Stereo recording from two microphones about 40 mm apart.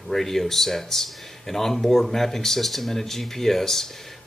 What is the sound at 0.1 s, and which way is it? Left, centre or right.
Speech, centre.